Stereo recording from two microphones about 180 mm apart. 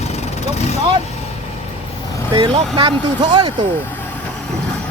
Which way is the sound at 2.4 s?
25° right (ahead or behind).